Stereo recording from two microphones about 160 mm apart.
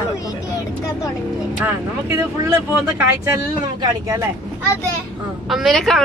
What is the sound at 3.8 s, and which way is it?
Speech, 20° right (ahead or behind).